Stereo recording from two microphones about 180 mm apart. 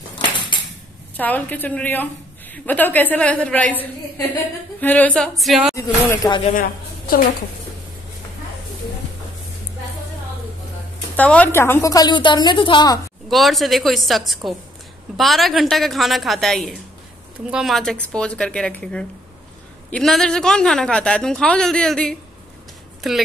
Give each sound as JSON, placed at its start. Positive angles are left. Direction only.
{"t": 1.1, "sound": "a woman's voice", "side_deg": 10}
{"t": 5.8, "sound": "a woman's voice", "side_deg": 20}
{"t": 6.5, "sound": "a woman's voice", "side_deg": 55}
{"t": 11.1, "sound": "a woman's voice", "side_deg": 10}
{"t": 13.3, "sound": "a woman's voice", "side_deg": 0}